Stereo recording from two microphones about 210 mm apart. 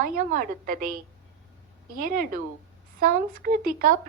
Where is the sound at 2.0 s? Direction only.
40° right (ahead or behind).